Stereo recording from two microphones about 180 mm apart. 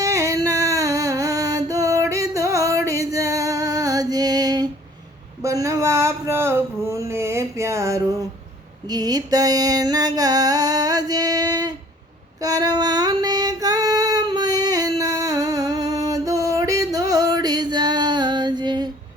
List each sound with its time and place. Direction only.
0.0 s music: 20° right (ahead or behind)
5.4 s a sound: 15° right (ahead or behind)
12.4 s female singing: 20° right (ahead or behind)